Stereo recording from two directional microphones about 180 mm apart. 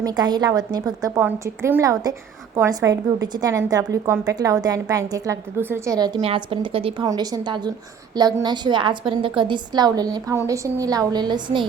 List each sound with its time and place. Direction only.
0.0 s a woman's voice: 20° right (ahead or behind)